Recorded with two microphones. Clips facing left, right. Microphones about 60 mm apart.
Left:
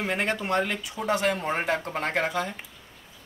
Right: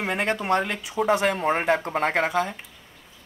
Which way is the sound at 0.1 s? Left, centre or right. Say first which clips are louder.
Right 4 dB; centre.